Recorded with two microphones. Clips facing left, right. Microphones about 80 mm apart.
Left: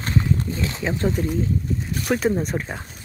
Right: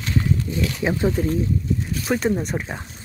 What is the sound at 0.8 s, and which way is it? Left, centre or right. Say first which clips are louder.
Speech: right 3 dB; centre.